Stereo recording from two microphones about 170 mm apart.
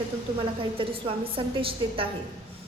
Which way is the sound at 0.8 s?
30° right (ahead or behind).